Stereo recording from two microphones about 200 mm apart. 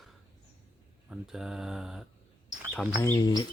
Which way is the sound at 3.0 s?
15° left (ahead or behind).